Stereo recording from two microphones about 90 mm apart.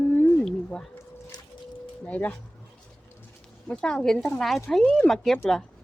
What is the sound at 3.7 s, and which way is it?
Speech, 10° left (ahead or behind).